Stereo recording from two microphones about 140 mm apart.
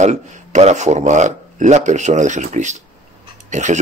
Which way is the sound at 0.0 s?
55° right (ahead or behind).